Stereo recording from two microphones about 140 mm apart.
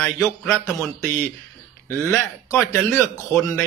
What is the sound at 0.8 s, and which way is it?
A man's voice, 15° left (ahead or behind).